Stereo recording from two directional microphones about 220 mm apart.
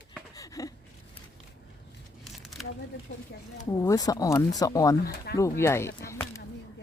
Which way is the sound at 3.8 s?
15° left (ahead or behind).